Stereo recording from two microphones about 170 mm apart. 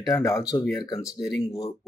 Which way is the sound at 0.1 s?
20° left (ahead or behind).